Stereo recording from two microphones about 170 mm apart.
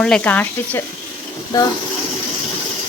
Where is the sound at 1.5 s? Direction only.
20° left (ahead or behind).